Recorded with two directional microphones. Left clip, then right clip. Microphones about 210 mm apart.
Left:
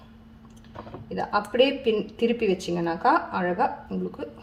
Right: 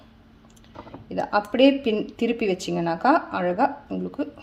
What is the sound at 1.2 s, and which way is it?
Speech, 50° right (ahead or behind).